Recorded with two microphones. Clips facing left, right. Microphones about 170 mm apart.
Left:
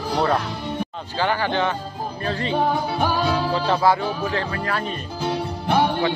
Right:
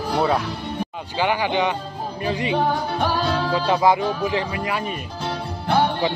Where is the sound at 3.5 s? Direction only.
15° right (ahead or behind).